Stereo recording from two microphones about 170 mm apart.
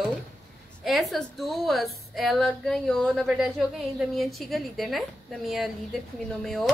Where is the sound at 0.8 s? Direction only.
Centre (ahead or behind).